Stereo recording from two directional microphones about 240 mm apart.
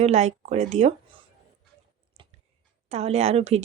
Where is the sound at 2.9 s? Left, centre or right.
Right.